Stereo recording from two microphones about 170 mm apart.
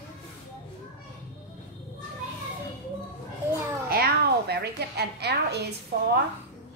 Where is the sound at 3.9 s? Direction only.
65° right (ahead or behind).